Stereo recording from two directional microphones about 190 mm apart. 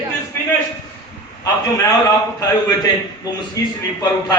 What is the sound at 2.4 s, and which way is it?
A man's voice, 20° left (ahead or behind).